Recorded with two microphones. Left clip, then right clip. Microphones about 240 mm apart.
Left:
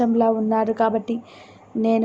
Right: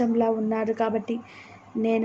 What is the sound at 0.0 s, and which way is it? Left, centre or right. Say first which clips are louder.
A woman's voice: left 4 dB; centre.